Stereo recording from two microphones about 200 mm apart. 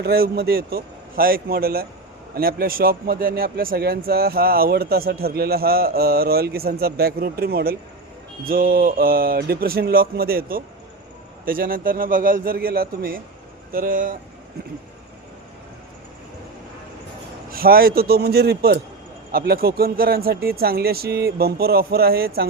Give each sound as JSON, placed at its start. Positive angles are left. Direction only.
{"t": 0.0, "sound": "a man's voice", "side_deg": -50}
{"t": 17.5, "sound": "a man's voice", "side_deg": -50}